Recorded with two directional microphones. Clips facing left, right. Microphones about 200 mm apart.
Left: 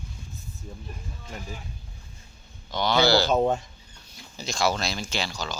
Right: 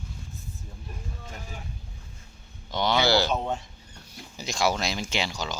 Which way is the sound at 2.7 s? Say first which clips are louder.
Left 2 dB; 20° right (ahead or behind).